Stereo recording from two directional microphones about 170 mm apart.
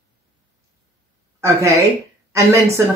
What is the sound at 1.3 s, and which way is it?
A woman's voice, 15° right (ahead or behind).